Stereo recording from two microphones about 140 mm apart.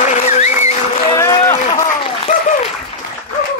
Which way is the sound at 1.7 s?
30° left (ahead or behind).